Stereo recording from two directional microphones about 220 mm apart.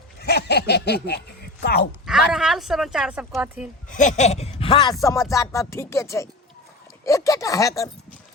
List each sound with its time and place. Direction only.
0.2 s speech: 50° left (ahead or behind)
2.0 s speech: centre (ahead or behind)
3.8 s speech: 35° left (ahead or behind); by 7.9 s 15° left (ahead or behind)